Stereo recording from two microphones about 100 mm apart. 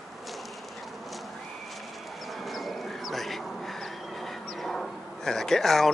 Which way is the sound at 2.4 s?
Centre (ahead or behind).